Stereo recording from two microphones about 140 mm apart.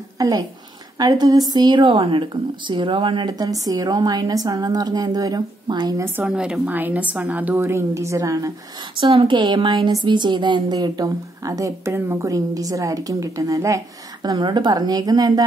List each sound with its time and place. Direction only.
0.2 s a woman's voice: 25° right (ahead or behind)
6.0 s a woman's voice: 10° right (ahead or behind)
9.0 s a woman's voice: 40° right (ahead or behind)